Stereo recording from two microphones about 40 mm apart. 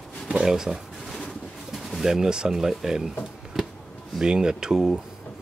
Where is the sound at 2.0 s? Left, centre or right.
Centre.